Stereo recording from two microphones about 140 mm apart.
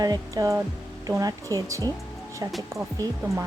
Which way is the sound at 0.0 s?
25° right (ahead or behind).